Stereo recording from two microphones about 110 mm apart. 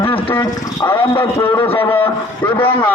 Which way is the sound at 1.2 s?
30° left (ahead or behind).